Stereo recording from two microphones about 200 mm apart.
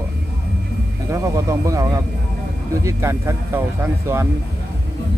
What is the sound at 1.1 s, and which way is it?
Speech, 15° right (ahead or behind).